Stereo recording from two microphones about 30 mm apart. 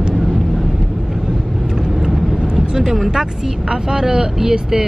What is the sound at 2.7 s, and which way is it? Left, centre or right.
Vehicle, centre.